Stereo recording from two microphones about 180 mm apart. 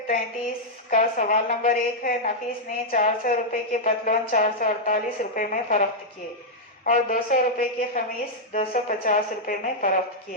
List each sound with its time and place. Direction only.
0.9 s a woman's voice: 45° left (ahead or behind)
6.8 s a woman's voice: 45° left (ahead or behind)